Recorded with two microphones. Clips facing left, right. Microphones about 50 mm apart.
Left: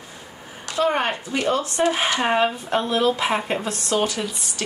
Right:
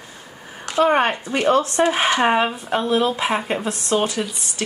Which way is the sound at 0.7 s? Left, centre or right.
Right.